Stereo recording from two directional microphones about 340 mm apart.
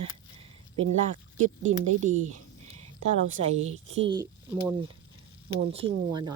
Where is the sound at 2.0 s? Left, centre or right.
Right.